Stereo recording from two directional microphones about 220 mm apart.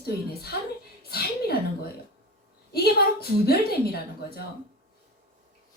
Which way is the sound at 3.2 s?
45° left (ahead or behind).